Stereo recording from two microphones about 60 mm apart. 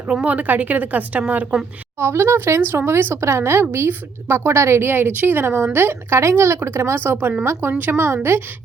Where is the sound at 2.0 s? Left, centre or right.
Right.